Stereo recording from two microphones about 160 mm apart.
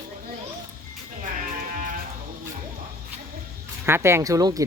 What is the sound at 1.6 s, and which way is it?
Sheep, 60° right (ahead or behind).